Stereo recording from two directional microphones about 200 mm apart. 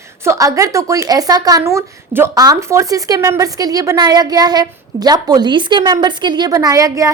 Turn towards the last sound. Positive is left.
turn(degrees=-15)  # may be behind; listen again after turning